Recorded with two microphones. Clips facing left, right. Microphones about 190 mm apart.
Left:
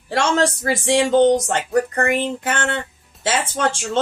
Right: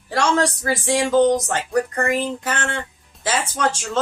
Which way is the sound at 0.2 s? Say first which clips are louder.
Left 1 dB; 25° left (ahead or behind).